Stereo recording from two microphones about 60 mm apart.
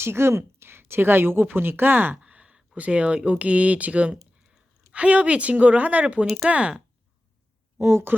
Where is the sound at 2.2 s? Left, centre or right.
Centre.